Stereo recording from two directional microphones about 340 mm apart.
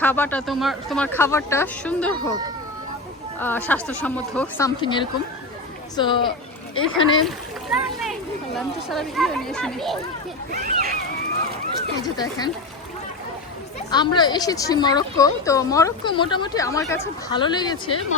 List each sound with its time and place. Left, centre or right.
0.0 s speech: centre
3.3 s a woman's voice: centre
6.7 s speech: left
7.3 s splash: centre
8.5 s speech: centre
10.5 s speech: right
12.0 s a woman's voice: centre
13.9 s a woman's voice: centre